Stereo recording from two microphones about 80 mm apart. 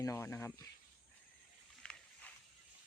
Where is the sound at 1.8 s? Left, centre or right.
Centre.